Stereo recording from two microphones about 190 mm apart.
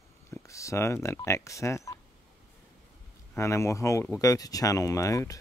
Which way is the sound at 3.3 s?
15° left (ahead or behind).